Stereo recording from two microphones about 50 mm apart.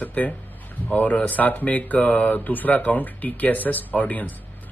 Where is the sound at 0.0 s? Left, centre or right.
Left.